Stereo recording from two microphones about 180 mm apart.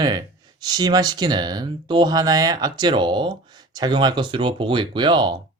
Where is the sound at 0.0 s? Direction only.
25° right (ahead or behind).